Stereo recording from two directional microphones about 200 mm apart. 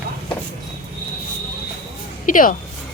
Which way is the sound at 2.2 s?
40° left (ahead or behind).